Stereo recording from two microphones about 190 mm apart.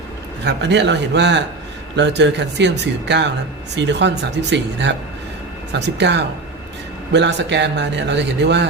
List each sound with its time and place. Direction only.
0.4 s a man's voice: 65° right (ahead or behind)
6.0 s a man's voice: 65° right (ahead or behind)